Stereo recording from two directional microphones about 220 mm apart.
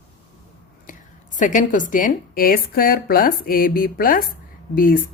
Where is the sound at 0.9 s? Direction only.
35° left (ahead or behind).